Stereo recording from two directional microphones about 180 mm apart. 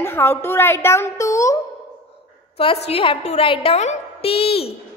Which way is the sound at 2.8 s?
30° left (ahead or behind).